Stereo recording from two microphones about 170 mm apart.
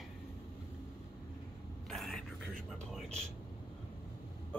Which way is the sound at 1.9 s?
Centre (ahead or behind).